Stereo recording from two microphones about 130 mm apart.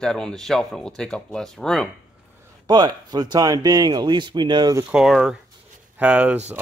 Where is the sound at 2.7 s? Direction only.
30° right (ahead or behind).